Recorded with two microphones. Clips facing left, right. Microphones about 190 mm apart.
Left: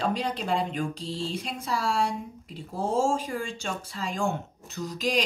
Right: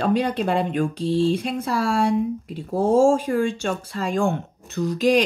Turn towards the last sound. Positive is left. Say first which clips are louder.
# right 9 dB
turn(degrees=-60)  # may be behind; listen again after turning